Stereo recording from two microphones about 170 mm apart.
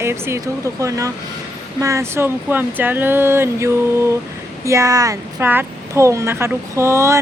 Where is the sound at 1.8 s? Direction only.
20° right (ahead or behind).